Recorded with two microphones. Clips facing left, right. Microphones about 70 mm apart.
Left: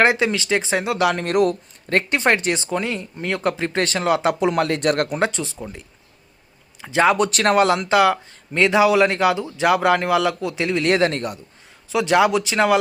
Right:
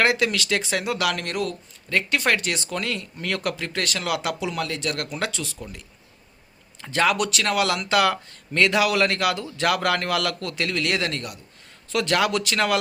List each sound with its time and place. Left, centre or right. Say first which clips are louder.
0.0 s speech: left 4 dB; left
1.3 s speech: left 9 dB; left
2.1 s speech: left 4 dB; left
4.4 s speech: left 9 dB; left
5.2 s speech: left 7 dB; left
6.8 s speech: left 5 dB; left
7.3 s speech: left 7 dB; left
10.8 s speech: left 7 dB; left
11.9 s speech: left 5 dB; centre